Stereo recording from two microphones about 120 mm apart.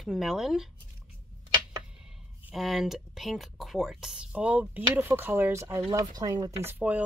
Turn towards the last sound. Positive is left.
turn(degrees=-15)  # may be behind; listen again after turning